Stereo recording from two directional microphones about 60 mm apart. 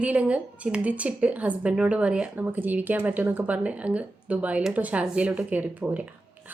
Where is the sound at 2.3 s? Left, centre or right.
Right.